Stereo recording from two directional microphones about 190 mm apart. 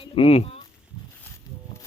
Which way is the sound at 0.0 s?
30° left (ahead or behind).